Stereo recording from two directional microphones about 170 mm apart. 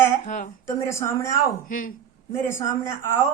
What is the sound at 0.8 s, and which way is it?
Speech, 15° left (ahead or behind).